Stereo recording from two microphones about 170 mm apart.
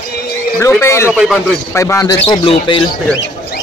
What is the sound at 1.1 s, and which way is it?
Speech, 5° right (ahead or behind).